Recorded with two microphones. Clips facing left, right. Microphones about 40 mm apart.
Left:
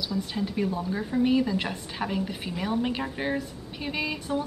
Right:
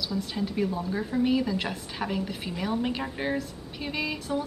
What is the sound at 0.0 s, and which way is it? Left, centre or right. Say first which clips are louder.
Speech: left 1 dB; centre.